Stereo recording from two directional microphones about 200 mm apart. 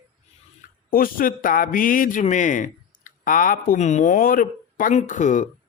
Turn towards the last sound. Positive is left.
turn(degrees=40)  # may be behind; listen again after turning